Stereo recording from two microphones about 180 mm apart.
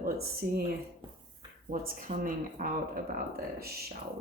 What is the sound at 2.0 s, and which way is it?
Speech, 50° right (ahead or behind).